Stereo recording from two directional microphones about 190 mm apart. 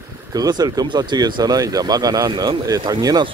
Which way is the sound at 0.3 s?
20° right (ahead or behind).